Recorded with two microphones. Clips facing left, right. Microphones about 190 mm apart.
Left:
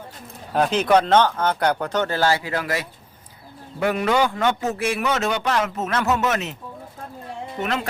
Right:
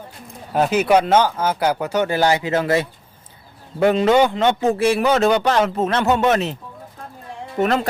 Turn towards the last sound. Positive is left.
turn(degrees=-40)  # may be behind; listen again after turning